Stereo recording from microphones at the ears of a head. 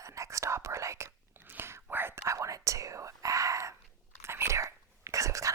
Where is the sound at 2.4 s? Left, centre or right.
Right.